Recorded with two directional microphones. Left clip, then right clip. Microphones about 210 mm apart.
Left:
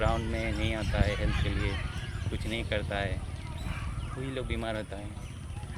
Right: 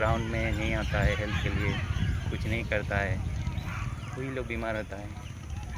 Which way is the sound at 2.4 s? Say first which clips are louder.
Right 2 dB; 5° left (ahead or behind).